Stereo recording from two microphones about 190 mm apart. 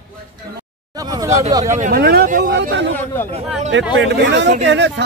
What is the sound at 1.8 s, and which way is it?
Speech, 50° right (ahead or behind).